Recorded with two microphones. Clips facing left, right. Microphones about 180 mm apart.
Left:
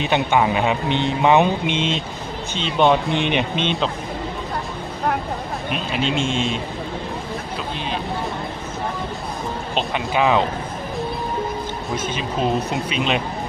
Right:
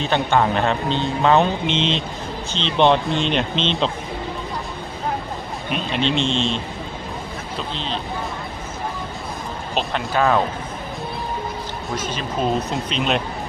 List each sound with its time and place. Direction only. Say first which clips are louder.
0.0 s speech: even; 15° left (ahead or behind)
1.6 s speech: even; 50° left (ahead or behind)
2.6 s speech: even; 5° left (ahead or behind)
3.1 s speech: left 1 dB; 60° left (ahead or behind)
5.7 s speech: right 2 dB; 5° left (ahead or behind)
9.9 s speech: even; 10° left (ahead or behind)
11.9 s speech: left 1 dB; 55° left (ahead or behind)
12.7 s speech: even; centre (ahead or behind)